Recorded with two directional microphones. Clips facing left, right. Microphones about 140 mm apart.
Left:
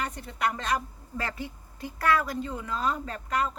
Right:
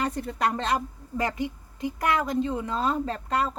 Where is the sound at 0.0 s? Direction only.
35° right (ahead or behind).